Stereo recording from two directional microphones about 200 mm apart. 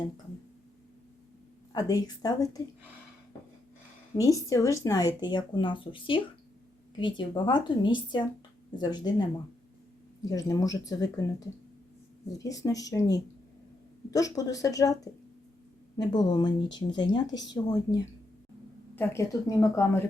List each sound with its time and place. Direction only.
1.7 s speech: 20° left (ahead or behind)
4.2 s speech: 15° left (ahead or behind)
10.2 s speech: 15° left (ahead or behind)